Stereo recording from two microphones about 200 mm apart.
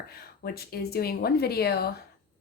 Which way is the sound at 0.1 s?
50° left (ahead or behind).